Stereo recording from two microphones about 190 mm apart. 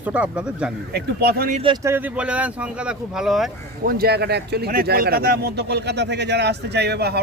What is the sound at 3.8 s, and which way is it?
Speech, 50° right (ahead or behind).